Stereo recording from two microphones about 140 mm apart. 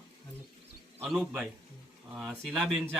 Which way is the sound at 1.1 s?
5° right (ahead or behind).